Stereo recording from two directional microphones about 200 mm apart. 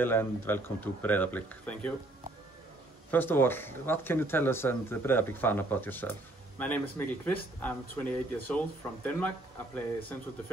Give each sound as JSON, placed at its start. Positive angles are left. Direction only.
{"t": 0.0, "sound": "speech", "side_deg": 10}
{"t": 3.1, "sound": "speech", "side_deg": 10}